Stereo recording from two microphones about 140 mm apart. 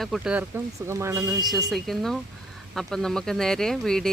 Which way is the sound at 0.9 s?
20° right (ahead or behind).